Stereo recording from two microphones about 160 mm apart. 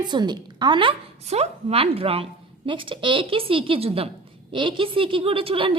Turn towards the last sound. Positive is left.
turn(degrees=-35)  # may be behind; listen again after turning